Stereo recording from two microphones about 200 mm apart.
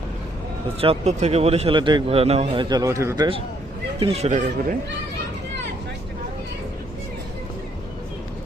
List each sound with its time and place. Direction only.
0.8 s a man's voice: 30° right (ahead or behind); by 3.2 s 15° right (ahead or behind)
4.0 s speech: 30° right (ahead or behind)